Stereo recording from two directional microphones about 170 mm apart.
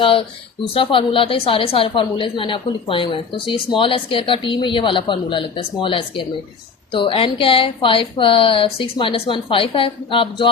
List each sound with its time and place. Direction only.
0.0 s a woman's voice: 30° left (ahead or behind)